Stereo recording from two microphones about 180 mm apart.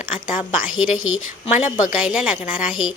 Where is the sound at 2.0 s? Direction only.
5° right (ahead or behind).